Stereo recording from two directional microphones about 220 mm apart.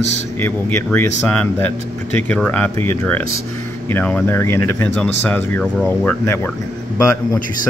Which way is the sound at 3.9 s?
10° left (ahead or behind).